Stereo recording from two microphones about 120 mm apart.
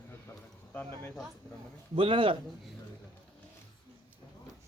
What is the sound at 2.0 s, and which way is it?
Speech, 45° right (ahead or behind).